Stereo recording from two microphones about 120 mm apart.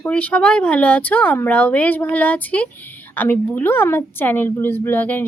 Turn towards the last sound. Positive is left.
turn(degrees=15)  # may be behind; listen again after turning